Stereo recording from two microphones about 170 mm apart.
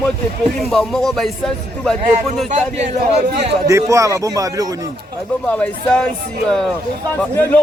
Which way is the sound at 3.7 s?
20° right (ahead or behind).